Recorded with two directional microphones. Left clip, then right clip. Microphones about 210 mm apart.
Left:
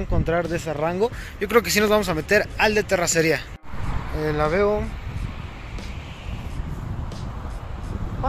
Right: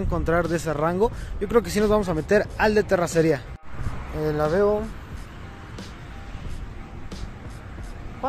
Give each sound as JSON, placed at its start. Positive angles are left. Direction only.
{"t": 0.1, "sound": "speech", "side_deg": -20}
{"t": 4.2, "sound": "speech", "side_deg": -5}